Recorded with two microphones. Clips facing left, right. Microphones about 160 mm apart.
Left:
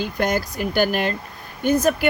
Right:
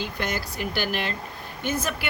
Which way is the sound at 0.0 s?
45° left (ahead or behind).